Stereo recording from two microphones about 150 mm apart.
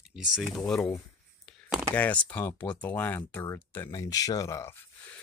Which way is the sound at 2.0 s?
10° left (ahead or behind).